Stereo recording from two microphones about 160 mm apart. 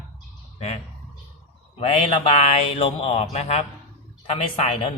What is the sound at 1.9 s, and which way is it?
A man's voice, 35° left (ahead or behind).